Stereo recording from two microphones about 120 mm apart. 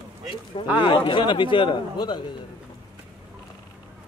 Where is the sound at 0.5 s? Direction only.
50° left (ahead or behind).